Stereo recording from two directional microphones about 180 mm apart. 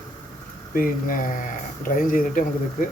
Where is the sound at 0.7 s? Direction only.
50° left (ahead or behind).